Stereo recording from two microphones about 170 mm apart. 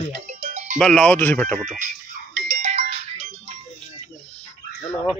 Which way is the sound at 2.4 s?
60° right (ahead or behind).